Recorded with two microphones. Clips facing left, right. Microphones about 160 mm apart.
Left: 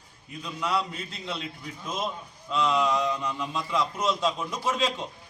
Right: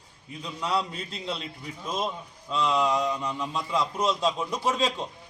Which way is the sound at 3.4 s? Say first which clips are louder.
Even; 30° right (ahead or behind).